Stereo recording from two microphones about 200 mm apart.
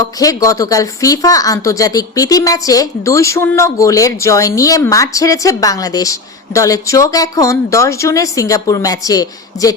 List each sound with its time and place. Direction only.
0.0 s a woman's voice: 20° left (ahead or behind)